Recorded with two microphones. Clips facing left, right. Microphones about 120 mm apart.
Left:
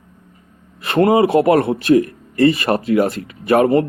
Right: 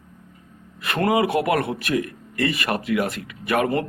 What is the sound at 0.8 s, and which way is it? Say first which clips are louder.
A man's voice: left 7 dB; 30° left (ahead or behind).